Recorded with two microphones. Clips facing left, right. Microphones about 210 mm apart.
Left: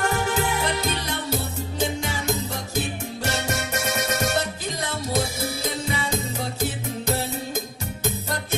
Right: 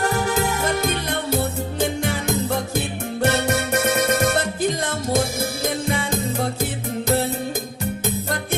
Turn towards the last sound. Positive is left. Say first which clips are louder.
# right 5 dB
turn(degrees=-55)  # may be behind; listen again after turning